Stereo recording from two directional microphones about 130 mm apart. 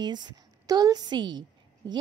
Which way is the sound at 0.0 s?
35° right (ahead or behind).